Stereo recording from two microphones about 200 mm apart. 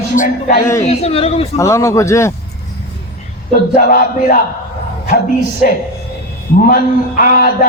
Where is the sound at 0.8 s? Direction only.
30° left (ahead or behind).